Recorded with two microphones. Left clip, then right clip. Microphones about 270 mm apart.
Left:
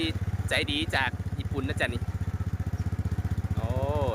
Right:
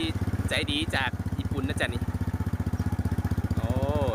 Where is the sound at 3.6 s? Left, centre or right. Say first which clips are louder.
Even; centre.